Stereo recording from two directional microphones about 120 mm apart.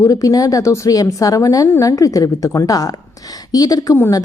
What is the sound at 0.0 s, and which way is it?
A woman's voice, 30° left (ahead or behind).